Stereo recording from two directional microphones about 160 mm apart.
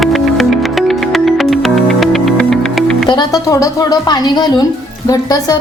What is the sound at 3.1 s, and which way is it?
A woman's voice, 25° left (ahead or behind).